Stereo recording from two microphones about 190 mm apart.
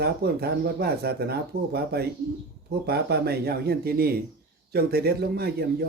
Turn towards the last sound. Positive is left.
turn(degrees=-55)  # may be behind; listen again after turning